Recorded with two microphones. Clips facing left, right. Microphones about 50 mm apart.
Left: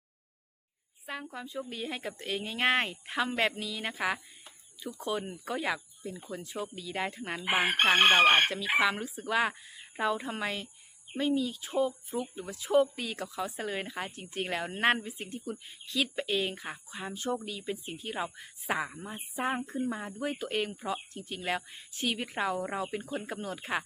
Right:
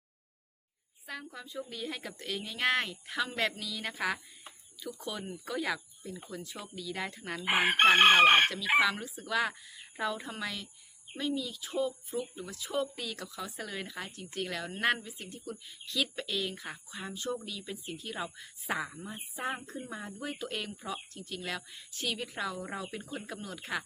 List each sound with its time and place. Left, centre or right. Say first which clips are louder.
1.0 s a woman's voice: left 3 dB; left
7.4 s chicken: right 2 dB; centre
8.6 s a woman's voice: even; centre; by 15.4 s left
15.9 s speech: left 2 dB; centre
16.1 s a woman's voice: left 4 dB; left
16.6 s a woman's voice: left 2 dB; centre
22.7 s a woman's voice: left 5 dB; centre